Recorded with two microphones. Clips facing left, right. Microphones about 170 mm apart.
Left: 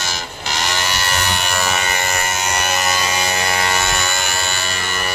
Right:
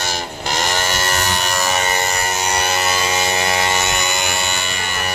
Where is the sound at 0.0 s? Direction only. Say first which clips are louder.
Right 3 dB; 50° right (ahead or behind); by 4.8 s 20° right (ahead or behind).